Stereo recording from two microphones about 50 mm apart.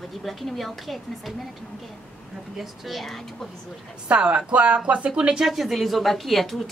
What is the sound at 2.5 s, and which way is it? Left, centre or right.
Speech, centre.